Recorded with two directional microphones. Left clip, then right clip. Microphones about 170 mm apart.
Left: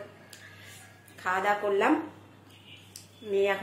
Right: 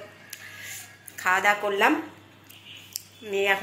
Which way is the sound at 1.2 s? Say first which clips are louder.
Right 5 dB; 10° right (ahead or behind).